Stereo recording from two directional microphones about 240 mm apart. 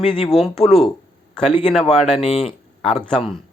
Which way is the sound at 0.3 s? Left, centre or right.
Centre.